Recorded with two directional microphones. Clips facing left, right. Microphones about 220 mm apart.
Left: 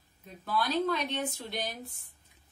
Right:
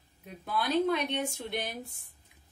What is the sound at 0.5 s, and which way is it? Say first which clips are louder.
Speech: right 2 dB; 15° right (ahead or behind).